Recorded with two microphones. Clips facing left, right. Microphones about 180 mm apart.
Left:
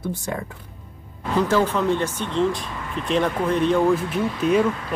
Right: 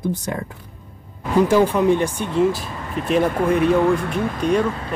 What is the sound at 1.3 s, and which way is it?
Speech, 10° right (ahead or behind).